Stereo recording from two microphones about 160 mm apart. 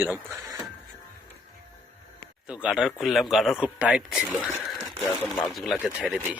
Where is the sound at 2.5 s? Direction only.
5° right (ahead or behind).